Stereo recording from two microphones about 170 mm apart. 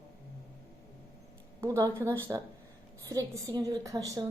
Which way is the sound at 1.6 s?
20° right (ahead or behind).